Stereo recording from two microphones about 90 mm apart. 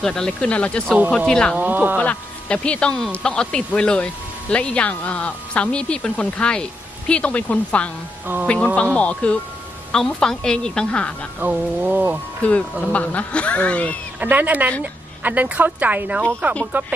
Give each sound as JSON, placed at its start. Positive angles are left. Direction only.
{"t": 0.0, "sound": "speech", "side_deg": 5}
{"t": 1.5, "sound": "music", "side_deg": -20}
{"t": 2.0, "sound": "speech", "side_deg": 15}
{"t": 11.3, "sound": "music", "side_deg": -15}
{"t": 12.4, "sound": "speech", "side_deg": 15}
{"t": 14.2, "sound": "music", "side_deg": -20}
{"t": 15.2, "sound": "a woman's voice", "side_deg": -20}
{"t": 16.4, "sound": "music", "side_deg": -20}